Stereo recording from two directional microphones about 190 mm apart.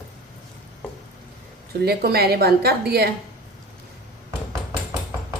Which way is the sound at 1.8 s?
55° right (ahead or behind).